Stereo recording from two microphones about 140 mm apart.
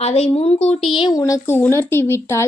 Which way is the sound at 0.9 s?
35° left (ahead or behind).